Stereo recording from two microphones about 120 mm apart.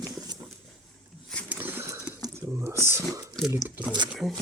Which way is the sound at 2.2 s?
30° right (ahead or behind).